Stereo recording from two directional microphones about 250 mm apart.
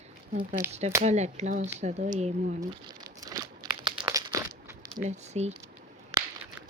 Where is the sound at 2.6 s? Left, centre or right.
Centre.